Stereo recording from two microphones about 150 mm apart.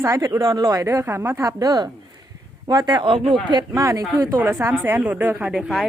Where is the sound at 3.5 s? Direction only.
25° right (ahead or behind).